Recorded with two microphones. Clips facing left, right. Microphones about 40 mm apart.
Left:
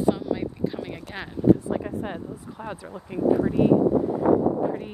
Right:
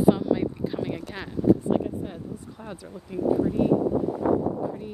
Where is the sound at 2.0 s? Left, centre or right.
Left.